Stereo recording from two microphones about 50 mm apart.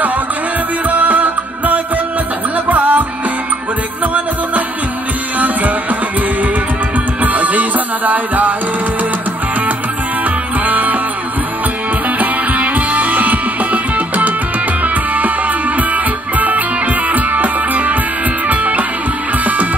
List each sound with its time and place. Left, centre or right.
0.8 s music: right
7.2 s music: right
10.6 s music: right
12.2 s music: right
15.9 s music: right